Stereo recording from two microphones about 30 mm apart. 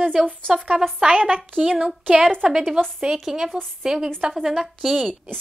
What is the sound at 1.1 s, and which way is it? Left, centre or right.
Speech, right.